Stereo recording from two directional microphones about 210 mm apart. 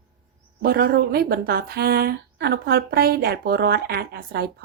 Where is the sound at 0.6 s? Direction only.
45° right (ahead or behind).